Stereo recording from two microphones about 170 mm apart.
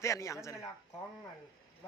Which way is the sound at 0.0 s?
15° left (ahead or behind).